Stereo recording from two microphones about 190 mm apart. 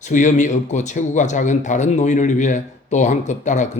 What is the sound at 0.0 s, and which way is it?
A man's voice, 40° left (ahead or behind).